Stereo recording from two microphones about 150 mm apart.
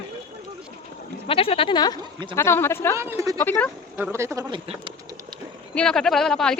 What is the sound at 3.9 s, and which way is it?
Speech, 15° right (ahead or behind).